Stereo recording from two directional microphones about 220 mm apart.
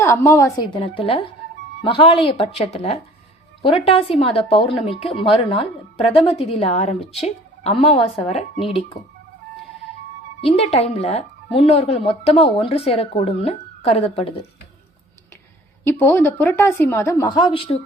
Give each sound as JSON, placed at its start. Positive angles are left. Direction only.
{"t": 0.0, "sound": "a woman's voice", "side_deg": 10}
{"t": 10.4, "sound": "a woman's voice", "side_deg": 30}
{"t": 15.8, "sound": "a woman's voice", "side_deg": 10}